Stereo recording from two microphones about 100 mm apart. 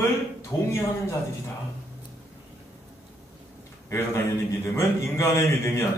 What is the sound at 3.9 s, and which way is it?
A man's voice, 30° left (ahead or behind).